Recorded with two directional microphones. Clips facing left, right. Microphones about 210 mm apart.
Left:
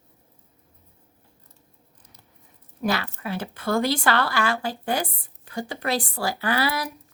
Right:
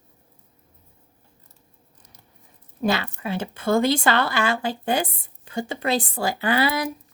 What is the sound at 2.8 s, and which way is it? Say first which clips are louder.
A woman's voice: right 2 dB; 25° right (ahead or behind).